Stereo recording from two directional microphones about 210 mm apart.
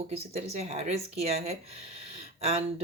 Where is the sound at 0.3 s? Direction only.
30° right (ahead or behind).